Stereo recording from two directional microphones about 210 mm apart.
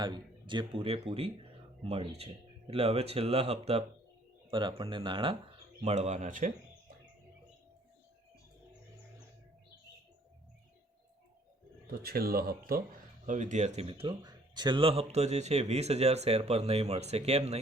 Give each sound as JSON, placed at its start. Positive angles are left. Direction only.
{"t": 0.0, "sound": "speech", "side_deg": -20}
{"t": 12.0, "sound": "speech", "side_deg": -45}